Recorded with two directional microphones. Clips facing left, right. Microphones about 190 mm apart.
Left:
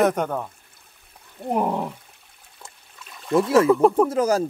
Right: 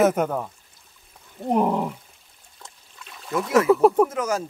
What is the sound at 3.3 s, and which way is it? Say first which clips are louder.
Speech: left 2 dB; 30° left (ahead or behind).